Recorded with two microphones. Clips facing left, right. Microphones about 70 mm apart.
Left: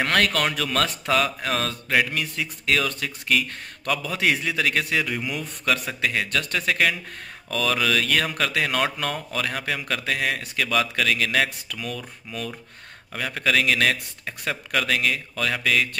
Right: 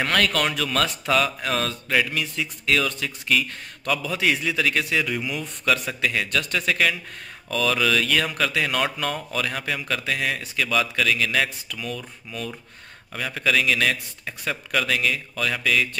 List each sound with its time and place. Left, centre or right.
0.0 s speech: left
13.1 s speech: left